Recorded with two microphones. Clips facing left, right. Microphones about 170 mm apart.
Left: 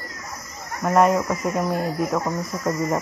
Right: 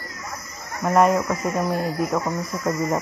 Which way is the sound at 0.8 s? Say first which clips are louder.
Even; centre (ahead or behind).